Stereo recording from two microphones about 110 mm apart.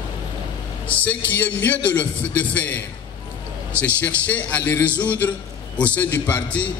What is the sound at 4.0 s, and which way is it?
A man's voice, 15° left (ahead or behind).